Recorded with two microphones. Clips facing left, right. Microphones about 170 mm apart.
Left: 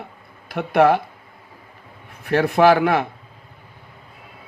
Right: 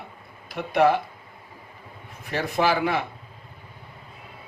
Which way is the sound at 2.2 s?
60° left (ahead or behind).